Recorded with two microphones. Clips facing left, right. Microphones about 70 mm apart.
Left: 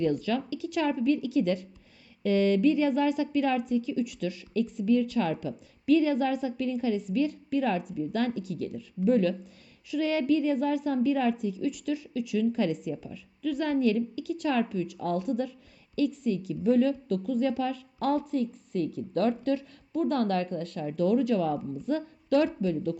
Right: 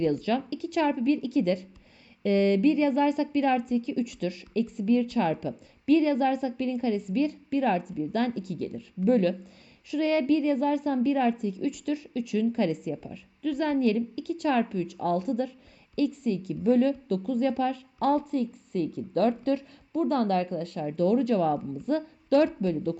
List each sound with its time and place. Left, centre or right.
0.0 s a woman's voice: right